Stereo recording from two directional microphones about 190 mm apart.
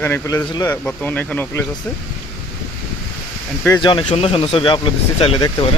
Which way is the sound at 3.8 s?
25° left (ahead or behind).